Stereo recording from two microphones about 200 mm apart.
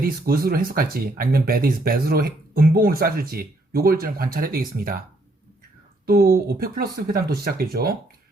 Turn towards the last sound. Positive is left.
turn(degrees=-50)  # may be behind; listen again after turning